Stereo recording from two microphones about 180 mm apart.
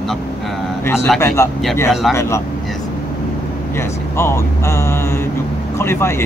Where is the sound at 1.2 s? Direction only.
15° left (ahead or behind).